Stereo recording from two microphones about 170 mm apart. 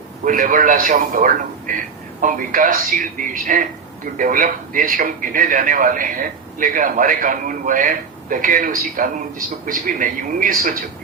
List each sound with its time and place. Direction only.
0.3 s a man's voice: 50° right (ahead or behind)